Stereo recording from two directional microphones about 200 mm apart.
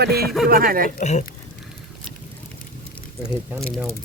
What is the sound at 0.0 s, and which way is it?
Speech, 50° right (ahead or behind).